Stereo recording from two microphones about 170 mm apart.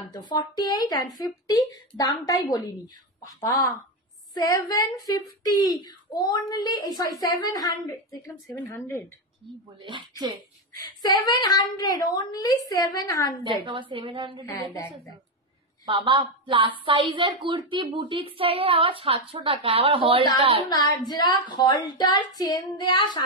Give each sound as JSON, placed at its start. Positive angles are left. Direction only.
{"t": 0.1, "sound": "speech", "side_deg": 25}
{"t": 9.8, "sound": "a woman's voice", "side_deg": -25}
{"t": 11.0, "sound": "speech", "side_deg": 25}
{"t": 13.7, "sound": "a woman's voice", "side_deg": -30}
{"t": 14.4, "sound": "speech", "side_deg": 20}
{"t": 15.8, "sound": "a woman's voice", "side_deg": -30}
{"t": 21.1, "sound": "speech", "side_deg": 25}